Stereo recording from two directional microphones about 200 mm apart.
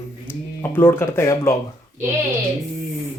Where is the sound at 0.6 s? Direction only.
10° left (ahead or behind).